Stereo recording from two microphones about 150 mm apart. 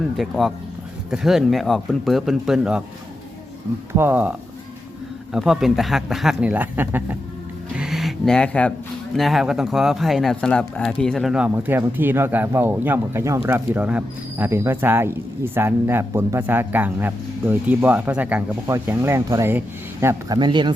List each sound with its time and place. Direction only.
0.2 s speech: centre (ahead or behind)
3.9 s speech: 15° right (ahead or behind)
7.8 s speech: centre (ahead or behind)
11.5 s speech: 15° right (ahead or behind); by 20.7 s 30° right (ahead or behind)